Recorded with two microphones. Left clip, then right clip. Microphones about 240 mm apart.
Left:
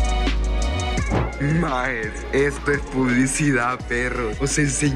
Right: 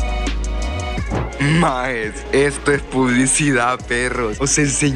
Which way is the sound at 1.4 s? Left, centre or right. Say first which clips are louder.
Right 7 dB; centre.